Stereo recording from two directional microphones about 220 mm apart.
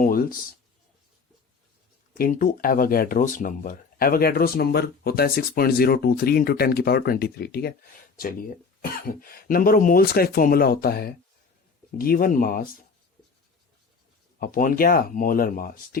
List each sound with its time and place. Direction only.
0.0 s a sound: 40° left (ahead or behind)
2.1 s speech: 40° left (ahead or behind)
14.3 s speech: 40° left (ahead or behind)